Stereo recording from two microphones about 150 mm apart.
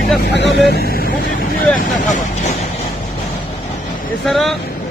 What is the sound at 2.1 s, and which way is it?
Speech, 55° left (ahead or behind).